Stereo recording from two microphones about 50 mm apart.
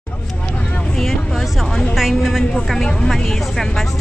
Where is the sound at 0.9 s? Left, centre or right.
Centre.